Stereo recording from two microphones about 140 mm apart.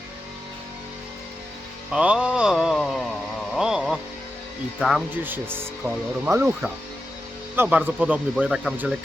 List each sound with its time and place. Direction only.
1.9 s a sound: 5° right (ahead or behind)
4.8 s speech: centre (ahead or behind)
5.2 s speech: 15° right (ahead or behind)
7.5 s speech: 15° right (ahead or behind)